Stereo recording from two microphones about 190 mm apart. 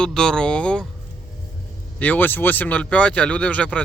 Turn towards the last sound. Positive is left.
turn(degrees=5)  # may be behind; listen again after turning